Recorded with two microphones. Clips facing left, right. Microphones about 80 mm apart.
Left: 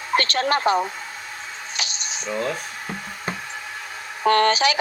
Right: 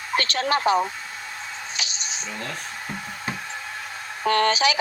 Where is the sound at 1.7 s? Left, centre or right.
Left.